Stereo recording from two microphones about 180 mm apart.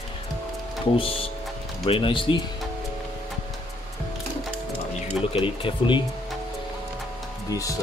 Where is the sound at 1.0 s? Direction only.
30° left (ahead or behind).